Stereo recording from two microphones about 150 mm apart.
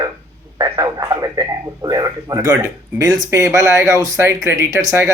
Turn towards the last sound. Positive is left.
turn(degrees=-20)  # may be behind; listen again after turning